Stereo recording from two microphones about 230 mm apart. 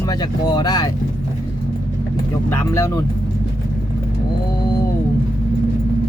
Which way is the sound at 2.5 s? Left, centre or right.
Centre.